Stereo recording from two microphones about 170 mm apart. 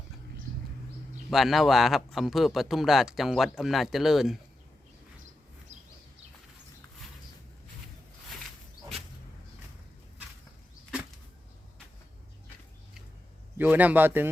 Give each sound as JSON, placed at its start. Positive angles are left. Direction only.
{"t": 1.3, "sound": "speech", "side_deg": 0}
{"t": 13.6, "sound": "a man's voice", "side_deg": -10}